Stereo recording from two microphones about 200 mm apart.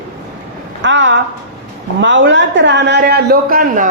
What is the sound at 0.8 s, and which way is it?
A woman's voice, 65° right (ahead or behind).